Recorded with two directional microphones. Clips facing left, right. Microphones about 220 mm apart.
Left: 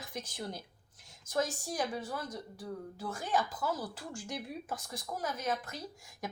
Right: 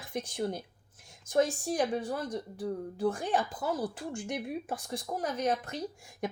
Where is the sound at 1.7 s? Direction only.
30° right (ahead or behind).